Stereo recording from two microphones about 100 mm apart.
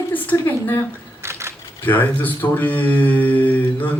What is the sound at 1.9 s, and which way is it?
Mantra, 20° left (ahead or behind).